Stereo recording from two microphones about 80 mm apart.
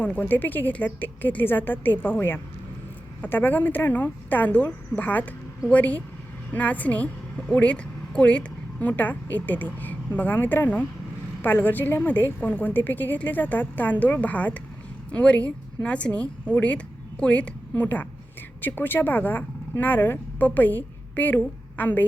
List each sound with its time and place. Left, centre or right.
0.0 s a woman's voice: left